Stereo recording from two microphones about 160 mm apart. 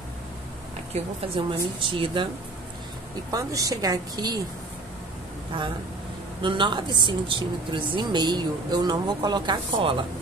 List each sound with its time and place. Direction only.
0.9 s speech: 35° right (ahead or behind)
3.3 s speech: 20° right (ahead or behind)
6.4 s speech: 30° right (ahead or behind)